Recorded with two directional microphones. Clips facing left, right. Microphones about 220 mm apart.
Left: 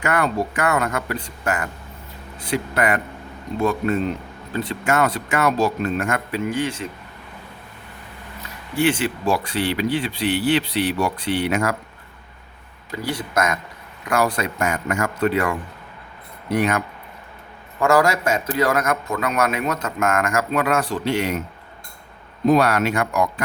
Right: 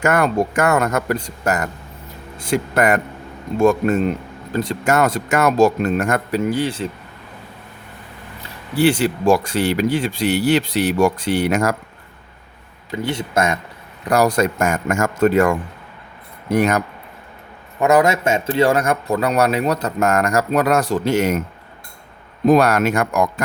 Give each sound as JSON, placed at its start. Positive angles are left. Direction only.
{"t": 0.0, "sound": "a man's voice", "side_deg": -45}
{"t": 8.7, "sound": "speech", "side_deg": -35}
{"t": 12.9, "sound": "speech", "side_deg": -20}
{"t": 14.0, "sound": "speech", "side_deg": -40}
{"t": 17.7, "sound": "a man's voice", "side_deg": -20}
{"t": 22.4, "sound": "speech", "side_deg": -45}